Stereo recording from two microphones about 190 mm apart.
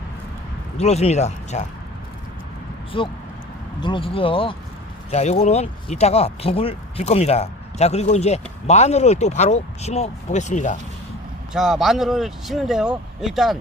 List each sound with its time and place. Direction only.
0.8 s speech: 35° left (ahead or behind)
2.9 s speech: 30° left (ahead or behind)
11.5 s speech: centre (ahead or behind)